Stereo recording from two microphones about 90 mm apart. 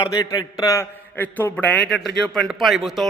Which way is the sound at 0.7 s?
25° left (ahead or behind).